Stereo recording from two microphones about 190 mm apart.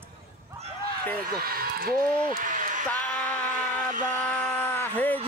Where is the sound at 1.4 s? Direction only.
50° right (ahead or behind).